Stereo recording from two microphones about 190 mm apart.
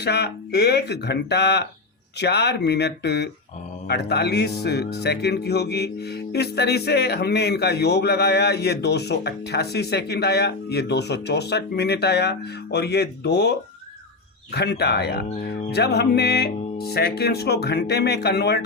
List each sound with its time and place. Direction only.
0.0 s speech: 60° left (ahead or behind)